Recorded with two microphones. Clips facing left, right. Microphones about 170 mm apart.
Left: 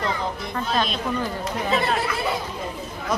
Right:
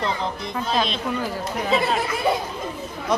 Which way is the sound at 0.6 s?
Centre (ahead or behind).